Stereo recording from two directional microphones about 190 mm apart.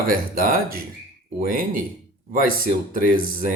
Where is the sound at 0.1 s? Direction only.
50° right (ahead or behind).